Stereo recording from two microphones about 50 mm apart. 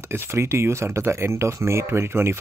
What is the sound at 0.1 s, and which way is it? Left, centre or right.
Speech, right.